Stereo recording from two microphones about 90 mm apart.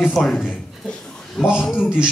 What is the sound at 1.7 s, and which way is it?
Speech, 20° left (ahead or behind).